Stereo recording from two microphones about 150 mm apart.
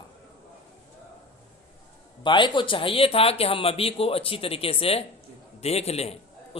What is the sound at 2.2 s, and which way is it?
A man's voice, 30° left (ahead or behind).